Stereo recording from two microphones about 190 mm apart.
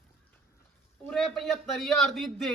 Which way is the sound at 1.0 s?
Centre (ahead or behind).